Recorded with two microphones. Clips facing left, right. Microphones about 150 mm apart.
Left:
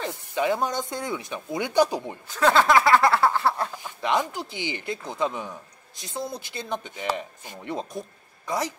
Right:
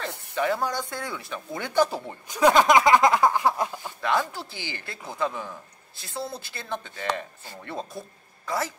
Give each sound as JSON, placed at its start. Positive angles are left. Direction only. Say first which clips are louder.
{"t": 0.3, "sound": "speech", "louder": "left 1 dB", "side_deg": 20}
{"t": 2.2, "sound": "speech", "louder": "right 2 dB", "side_deg": -15}
{"t": 4.0, "sound": "speech", "louder": "left 1 dB", "side_deg": 20}